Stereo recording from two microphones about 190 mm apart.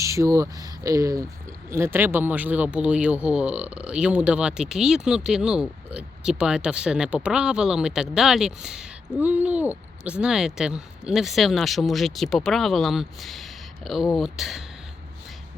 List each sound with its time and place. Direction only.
0.0 s speech: 15° right (ahead or behind)